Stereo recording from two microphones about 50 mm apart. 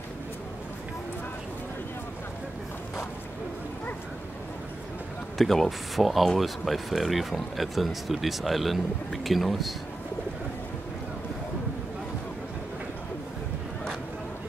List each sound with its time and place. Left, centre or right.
5.4 s speech: centre